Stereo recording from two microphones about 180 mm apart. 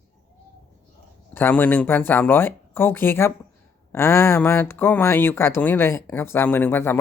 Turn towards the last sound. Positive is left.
turn(degrees=10)  # may be behind; listen again after turning